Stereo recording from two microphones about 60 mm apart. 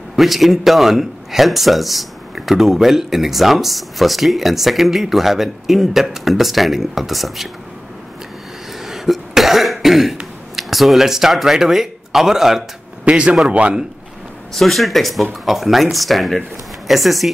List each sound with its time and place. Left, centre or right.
0.1 s a man's voice: centre
8.7 s cough: centre
13.0 s a man's voice: centre
14.5 s a man's voice: centre